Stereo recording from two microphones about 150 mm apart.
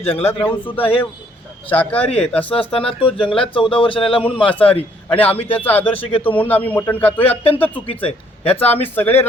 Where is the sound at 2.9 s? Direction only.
40° left (ahead or behind).